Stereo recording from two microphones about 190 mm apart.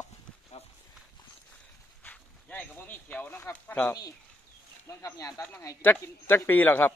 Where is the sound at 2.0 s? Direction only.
10° left (ahead or behind).